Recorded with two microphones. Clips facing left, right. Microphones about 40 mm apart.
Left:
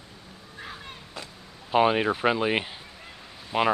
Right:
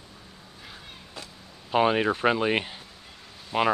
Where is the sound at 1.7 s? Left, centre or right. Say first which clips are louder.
Left 1 dB; centre.